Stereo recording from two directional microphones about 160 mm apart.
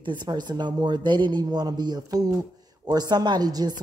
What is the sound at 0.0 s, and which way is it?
A woman's voice, 30° right (ahead or behind).